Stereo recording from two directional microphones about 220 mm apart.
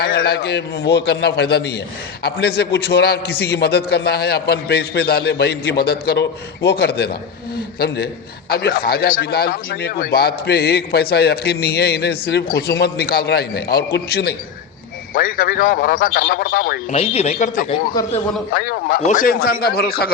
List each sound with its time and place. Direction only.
0.0 s a man's voice: 45° left (ahead or behind)
16.9 s a man's voice: 25° left (ahead or behind); by 20.1 s 45° left (ahead or behind)